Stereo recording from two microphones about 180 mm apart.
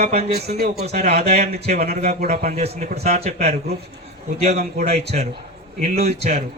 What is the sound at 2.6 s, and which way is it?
Speech, 35° right (ahead or behind).